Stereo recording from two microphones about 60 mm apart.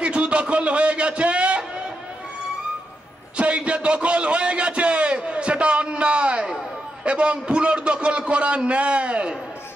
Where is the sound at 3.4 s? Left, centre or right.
Centre.